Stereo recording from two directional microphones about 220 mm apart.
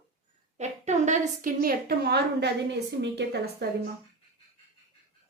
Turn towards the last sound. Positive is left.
turn(degrees=-50)  # may be behind; listen again after turning